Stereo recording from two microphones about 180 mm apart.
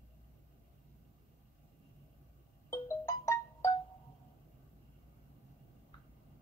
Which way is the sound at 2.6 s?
15° left (ahead or behind).